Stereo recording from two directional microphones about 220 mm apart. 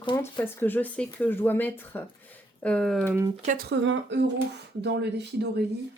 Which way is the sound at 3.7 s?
55° right (ahead or behind).